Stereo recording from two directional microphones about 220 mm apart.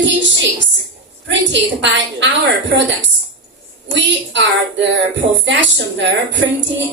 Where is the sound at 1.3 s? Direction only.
55° right (ahead or behind).